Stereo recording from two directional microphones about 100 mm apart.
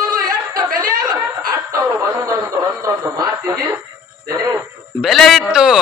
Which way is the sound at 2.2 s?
35° right (ahead or behind).